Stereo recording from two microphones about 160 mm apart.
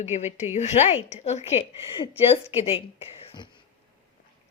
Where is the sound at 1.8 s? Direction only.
30° left (ahead or behind).